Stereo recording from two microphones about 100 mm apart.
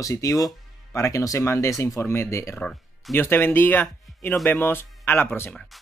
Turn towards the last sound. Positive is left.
turn(degrees=20)  # may be behind; listen again after turning